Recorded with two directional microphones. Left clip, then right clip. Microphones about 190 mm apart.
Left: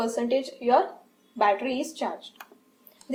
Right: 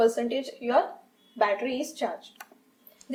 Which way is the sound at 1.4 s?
30° left (ahead or behind).